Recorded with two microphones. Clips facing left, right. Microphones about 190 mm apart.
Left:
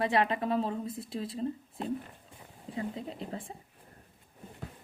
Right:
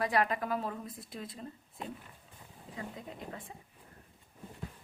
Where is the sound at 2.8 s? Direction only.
30° left (ahead or behind).